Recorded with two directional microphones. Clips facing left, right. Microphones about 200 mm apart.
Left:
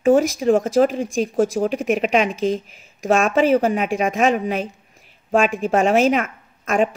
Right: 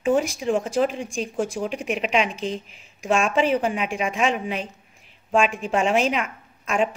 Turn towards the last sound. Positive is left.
turn(degrees=45)  # may be behind; listen again after turning